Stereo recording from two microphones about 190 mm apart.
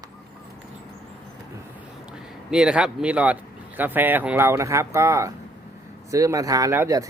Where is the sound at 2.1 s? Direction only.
5° right (ahead or behind).